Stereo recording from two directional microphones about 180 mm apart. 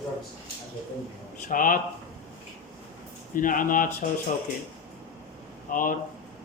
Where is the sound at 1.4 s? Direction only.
50° left (ahead or behind).